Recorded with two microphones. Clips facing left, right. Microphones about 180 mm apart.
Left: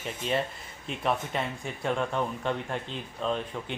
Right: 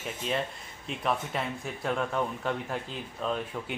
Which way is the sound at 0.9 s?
Centre (ahead or behind).